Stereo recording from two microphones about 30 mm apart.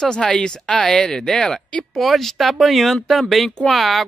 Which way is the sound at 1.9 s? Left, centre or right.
Centre.